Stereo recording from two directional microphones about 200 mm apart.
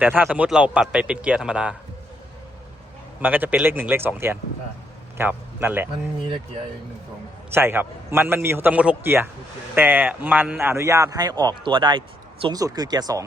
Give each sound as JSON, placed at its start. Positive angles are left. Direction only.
{"t": 0.0, "sound": "a man's voice", "side_deg": -10}
{"t": 3.2, "sound": "a man's voice", "side_deg": -10}
{"t": 7.5, "sound": "a man's voice", "side_deg": -10}